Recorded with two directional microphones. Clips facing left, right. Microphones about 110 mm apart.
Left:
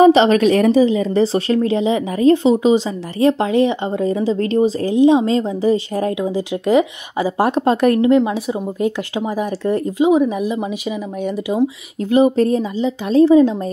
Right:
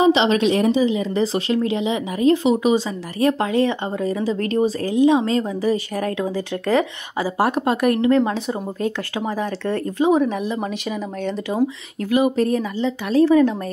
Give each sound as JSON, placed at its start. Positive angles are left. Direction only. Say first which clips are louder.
{"t": 0.0, "sound": "a woman's voice", "louder": "left 5 dB", "side_deg": 45}
{"t": 8.3, "sound": "speech", "louder": "left 3 dB", "side_deg": 15}
{"t": 12.1, "sound": "a woman's voice", "louder": "left 4 dB", "side_deg": 30}